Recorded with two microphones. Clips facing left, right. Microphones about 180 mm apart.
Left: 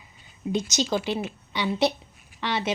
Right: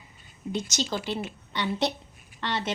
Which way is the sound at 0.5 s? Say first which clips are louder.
Left 4 dB; 15° left (ahead or behind).